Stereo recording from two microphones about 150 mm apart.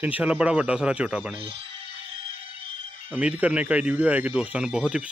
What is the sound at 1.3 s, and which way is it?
Music, 35° right (ahead or behind).